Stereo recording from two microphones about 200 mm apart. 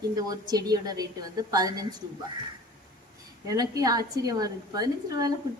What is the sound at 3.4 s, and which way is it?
A woman's voice, 15° right (ahead or behind).